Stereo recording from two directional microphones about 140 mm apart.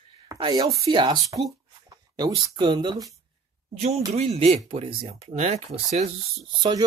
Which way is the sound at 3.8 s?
50° right (ahead or behind).